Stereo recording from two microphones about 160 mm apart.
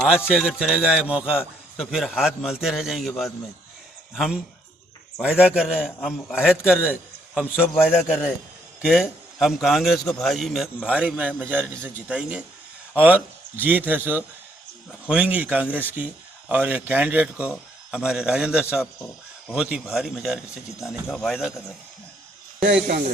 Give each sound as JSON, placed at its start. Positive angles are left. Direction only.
{"t": 0.3, "sound": "a man's voice", "side_deg": -5}
{"t": 5.4, "sound": "a man's voice", "side_deg": -5}
{"t": 22.6, "sound": "speech", "side_deg": -85}